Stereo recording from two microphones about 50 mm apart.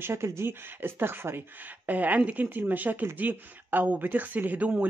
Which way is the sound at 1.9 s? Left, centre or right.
Right.